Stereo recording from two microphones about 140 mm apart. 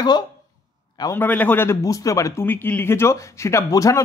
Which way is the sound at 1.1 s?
10° left (ahead or behind).